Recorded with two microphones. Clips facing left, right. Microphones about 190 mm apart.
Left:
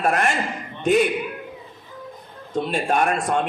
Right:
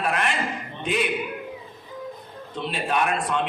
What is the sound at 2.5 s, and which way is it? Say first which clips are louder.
Speech: left 5 dB; 45° left (ahead or behind).